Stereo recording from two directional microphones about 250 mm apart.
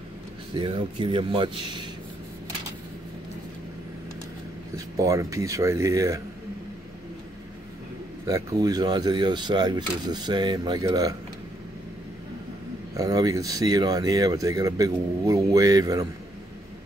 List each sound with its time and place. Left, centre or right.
0.6 s speech: right
4.7 s speech: centre
8.3 s speech: centre
12.9 s speech: centre